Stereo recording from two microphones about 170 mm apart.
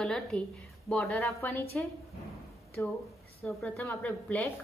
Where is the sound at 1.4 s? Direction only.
15° left (ahead or behind).